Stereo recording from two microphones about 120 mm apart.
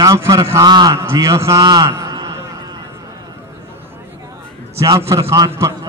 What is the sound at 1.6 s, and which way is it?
Speech, 40° right (ahead or behind).